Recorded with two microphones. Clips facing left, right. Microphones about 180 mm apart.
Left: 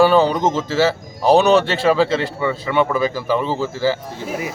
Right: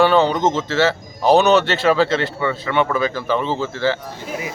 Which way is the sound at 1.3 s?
30° left (ahead or behind).